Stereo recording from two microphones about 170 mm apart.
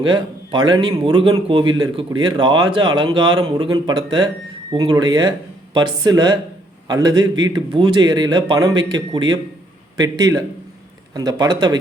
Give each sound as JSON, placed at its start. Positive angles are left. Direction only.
{"t": 0.5, "sound": "a man's voice", "side_deg": -25}